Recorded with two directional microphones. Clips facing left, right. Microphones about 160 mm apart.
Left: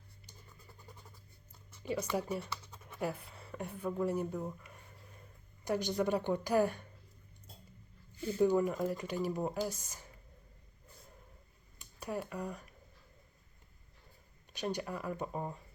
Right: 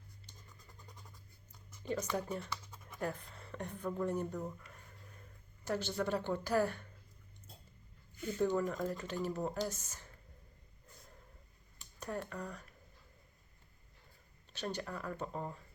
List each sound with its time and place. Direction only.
1.8 s speech: 10° left (ahead or behind)
8.1 s a sound: 30° left (ahead or behind)
8.4 s speech: 10° left (ahead or behind)
11.8 s speech: 10° left (ahead or behind)
14.5 s speech: 15° left (ahead or behind)